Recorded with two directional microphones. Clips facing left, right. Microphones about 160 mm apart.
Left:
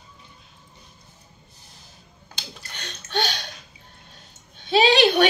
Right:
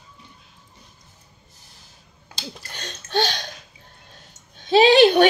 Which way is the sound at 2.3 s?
40° right (ahead or behind).